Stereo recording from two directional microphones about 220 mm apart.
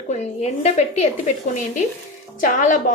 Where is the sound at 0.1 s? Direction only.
30° left (ahead or behind).